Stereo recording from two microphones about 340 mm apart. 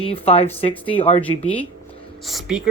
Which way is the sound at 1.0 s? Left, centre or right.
Centre.